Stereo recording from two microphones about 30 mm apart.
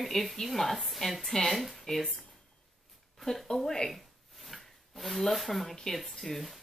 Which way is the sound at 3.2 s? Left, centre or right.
Centre.